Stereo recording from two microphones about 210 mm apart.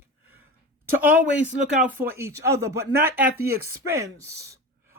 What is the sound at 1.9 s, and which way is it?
Speech, 10° right (ahead or behind).